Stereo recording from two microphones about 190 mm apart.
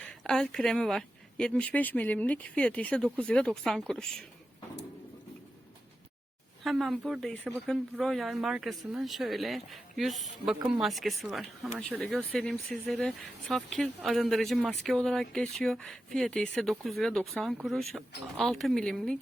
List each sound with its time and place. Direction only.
0.0 s speech: 5° left (ahead or behind)
6.7 s speech: centre (ahead or behind)